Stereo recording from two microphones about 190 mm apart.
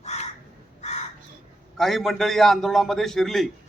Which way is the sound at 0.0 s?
35° left (ahead or behind).